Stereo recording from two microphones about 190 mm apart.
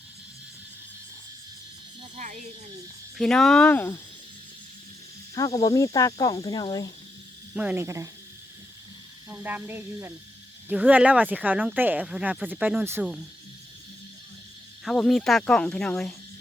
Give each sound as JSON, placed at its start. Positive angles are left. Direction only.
{"t": 2.1, "sound": "speech", "side_deg": -40}
{"t": 3.2, "sound": "speech", "side_deg": 0}
{"t": 5.5, "sound": "speech", "side_deg": 15}
{"t": 7.5, "sound": "speech", "side_deg": -5}
{"t": 9.3, "sound": "speech", "side_deg": -10}
{"t": 14.8, "sound": "speech", "side_deg": 0}